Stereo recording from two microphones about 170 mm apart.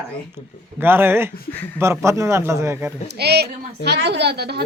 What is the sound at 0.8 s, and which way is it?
Speech, 10° right (ahead or behind).